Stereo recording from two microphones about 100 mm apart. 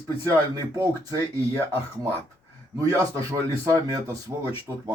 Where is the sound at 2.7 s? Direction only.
30° right (ahead or behind).